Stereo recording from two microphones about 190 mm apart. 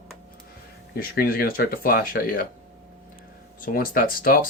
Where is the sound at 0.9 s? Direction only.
55° left (ahead or behind).